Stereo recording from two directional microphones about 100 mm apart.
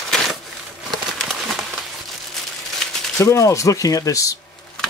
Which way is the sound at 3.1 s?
30° left (ahead or behind).